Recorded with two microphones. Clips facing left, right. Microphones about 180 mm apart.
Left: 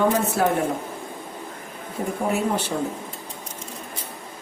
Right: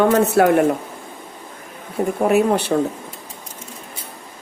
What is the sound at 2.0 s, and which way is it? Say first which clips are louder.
Speech: right 8 dB; 75° right (ahead or behind).